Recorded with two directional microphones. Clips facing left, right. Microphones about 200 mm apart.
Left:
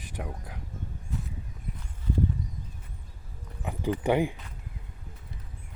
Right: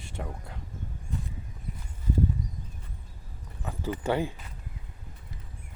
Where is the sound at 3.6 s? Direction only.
15° left (ahead or behind).